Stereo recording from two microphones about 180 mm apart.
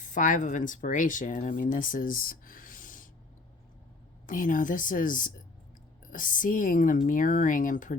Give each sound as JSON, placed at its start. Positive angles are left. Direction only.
{"t": 0.0, "sound": "speech", "side_deg": 45}
{"t": 4.3, "sound": "a woman's voice", "side_deg": 50}